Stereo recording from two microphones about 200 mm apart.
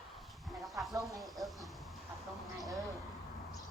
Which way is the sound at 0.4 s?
Centre (ahead or behind).